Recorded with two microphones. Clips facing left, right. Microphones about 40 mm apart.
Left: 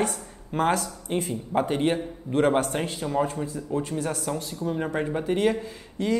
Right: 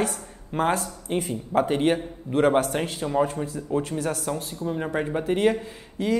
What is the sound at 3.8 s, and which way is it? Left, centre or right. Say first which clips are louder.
Speech: right 1 dB; right.